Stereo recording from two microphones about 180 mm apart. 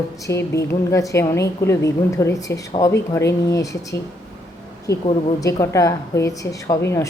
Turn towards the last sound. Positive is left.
turn(degrees=15)  # may be behind; listen again after turning